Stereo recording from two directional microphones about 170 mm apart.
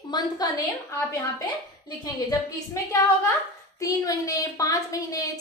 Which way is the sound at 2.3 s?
20° left (ahead or behind).